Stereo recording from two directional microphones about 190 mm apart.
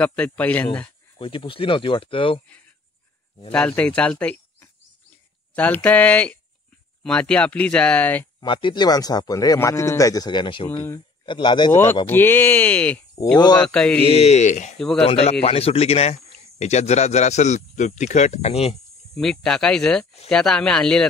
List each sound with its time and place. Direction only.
0.0 s speech: 5° left (ahead or behind)
1.1 s speech: 25° left (ahead or behind)
3.5 s speech: 5° left (ahead or behind)
8.4 s speech: 25° left (ahead or behind)
11.7 s speech: 10° left (ahead or behind)
14.0 s speech: 35° left (ahead or behind)
19.4 s speech: 5° left (ahead or behind)